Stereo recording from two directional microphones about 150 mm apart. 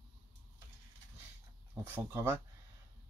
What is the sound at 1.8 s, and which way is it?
Speech, 15° right (ahead or behind).